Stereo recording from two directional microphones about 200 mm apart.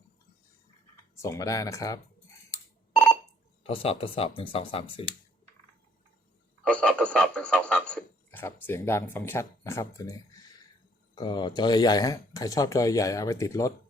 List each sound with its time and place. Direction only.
1.2 s speech: 15° left (ahead or behind)
2.9 s telephone dialing: centre (ahead or behind)
3.6 s speech: 30° left (ahead or behind)
6.7 s a man's voice: 5° left (ahead or behind)